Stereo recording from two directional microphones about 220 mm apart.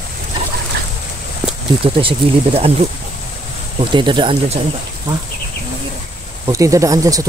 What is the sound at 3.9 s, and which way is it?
Speech, 20° right (ahead or behind).